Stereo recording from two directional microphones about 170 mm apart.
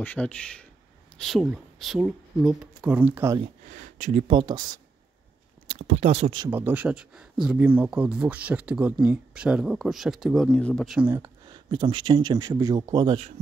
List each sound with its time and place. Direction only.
0.0 s a man's voice: 10° left (ahead or behind); by 3.3 s 15° right (ahead or behind)
3.7 s speech: 45° right (ahead or behind)
4.3 s speech: 25° right (ahead or behind)
5.7 s speech: 35° right (ahead or behind)
6.5 s speech: 10° right (ahead or behind); by 11.0 s 5° left (ahead or behind)
11.0 s speech: 10° right (ahead or behind)
11.4 s speech: 30° right (ahead or behind)